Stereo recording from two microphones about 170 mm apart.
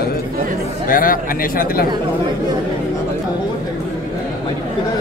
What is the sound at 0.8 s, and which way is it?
A man's voice, 55° left (ahead or behind).